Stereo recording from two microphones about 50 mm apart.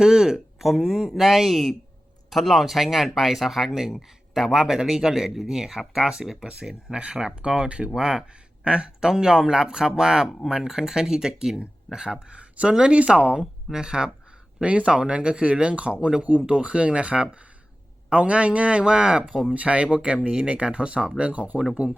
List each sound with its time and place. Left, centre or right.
0.0 s speech: centre; by 21.6 s right